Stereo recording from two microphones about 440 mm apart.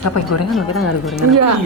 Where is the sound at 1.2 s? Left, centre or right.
Right.